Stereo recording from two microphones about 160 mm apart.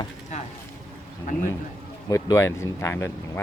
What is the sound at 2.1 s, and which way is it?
Speech, 20° left (ahead or behind).